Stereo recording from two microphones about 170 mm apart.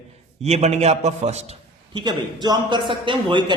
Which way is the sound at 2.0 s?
25° right (ahead or behind).